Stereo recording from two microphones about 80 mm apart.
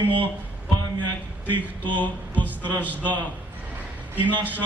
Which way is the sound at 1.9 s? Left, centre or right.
Left.